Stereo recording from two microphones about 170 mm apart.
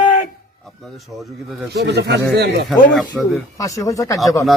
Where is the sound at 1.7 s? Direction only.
80° right.